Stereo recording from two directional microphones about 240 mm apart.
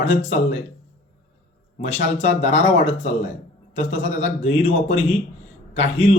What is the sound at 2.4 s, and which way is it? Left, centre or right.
Speech, left.